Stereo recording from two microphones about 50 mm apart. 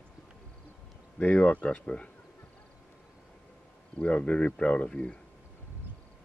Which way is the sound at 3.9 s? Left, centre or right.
Left.